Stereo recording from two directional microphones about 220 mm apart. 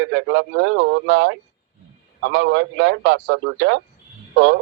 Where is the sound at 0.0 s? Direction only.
55° right (ahead or behind).